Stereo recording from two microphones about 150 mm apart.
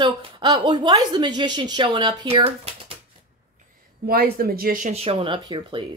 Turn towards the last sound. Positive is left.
turn(degrees=-30)  # may be behind; listen again after turning